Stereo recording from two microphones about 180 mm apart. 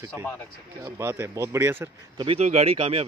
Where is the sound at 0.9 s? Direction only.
15° right (ahead or behind).